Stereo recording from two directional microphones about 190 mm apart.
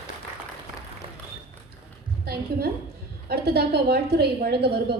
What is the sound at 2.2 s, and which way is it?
A woman's voice, 55° right (ahead or behind).